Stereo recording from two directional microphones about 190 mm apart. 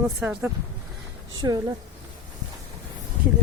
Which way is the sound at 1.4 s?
15° right (ahead or behind).